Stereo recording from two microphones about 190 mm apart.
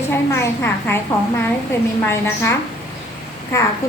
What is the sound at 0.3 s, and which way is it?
Speech, 10° left (ahead or behind).